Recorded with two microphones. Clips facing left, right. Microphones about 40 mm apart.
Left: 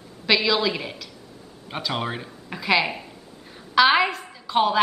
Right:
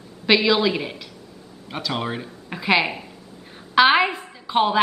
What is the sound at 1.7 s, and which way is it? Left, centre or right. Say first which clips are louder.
Speech: right 1 dB; centre.